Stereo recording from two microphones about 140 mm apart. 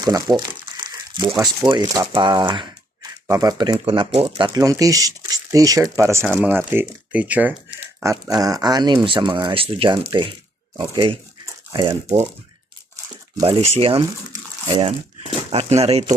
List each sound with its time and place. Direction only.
0.0 s crumpling: 30° right (ahead or behind)
1.6 s speech: 30° right (ahead or behind)
3.8 s speech: 40° right (ahead or behind); by 8.1 s 10° right (ahead or behind)
8.1 s speech: 25° right (ahead or behind)
13.4 s speech: 40° right (ahead or behind)